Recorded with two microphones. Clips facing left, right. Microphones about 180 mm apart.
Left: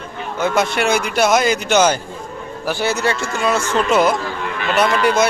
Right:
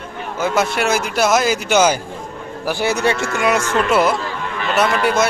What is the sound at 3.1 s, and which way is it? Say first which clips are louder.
Speech: right 2 dB; 70° right (ahead or behind).